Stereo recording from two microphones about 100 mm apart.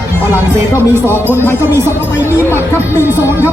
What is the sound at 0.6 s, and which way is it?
Speech, 25° right (ahead or behind).